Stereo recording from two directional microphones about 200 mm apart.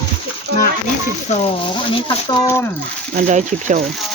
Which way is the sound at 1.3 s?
30° left (ahead or behind).